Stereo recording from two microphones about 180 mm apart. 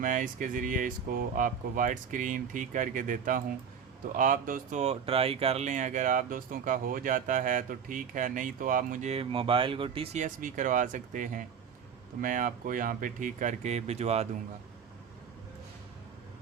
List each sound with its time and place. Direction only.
0.0 s speech: 45° right (ahead or behind)